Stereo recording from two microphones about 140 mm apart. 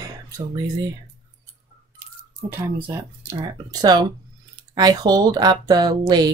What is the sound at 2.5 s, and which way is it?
Speech, 15° right (ahead or behind).